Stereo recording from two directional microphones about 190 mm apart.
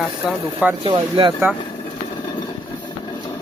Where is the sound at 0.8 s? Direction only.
25° right (ahead or behind).